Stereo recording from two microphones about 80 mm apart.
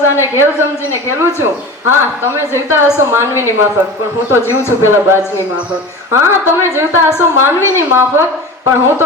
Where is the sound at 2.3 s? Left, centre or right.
Right.